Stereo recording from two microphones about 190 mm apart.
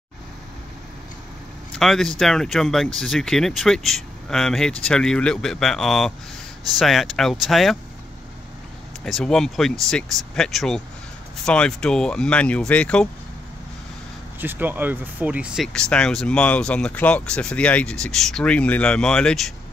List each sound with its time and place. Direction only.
1.7 s speech: centre (ahead or behind)
9.0 s speech: 5° left (ahead or behind)
14.4 s speech: 10° right (ahead or behind)